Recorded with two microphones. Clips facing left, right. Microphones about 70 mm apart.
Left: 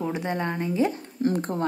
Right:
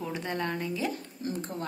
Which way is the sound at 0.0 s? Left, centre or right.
Left.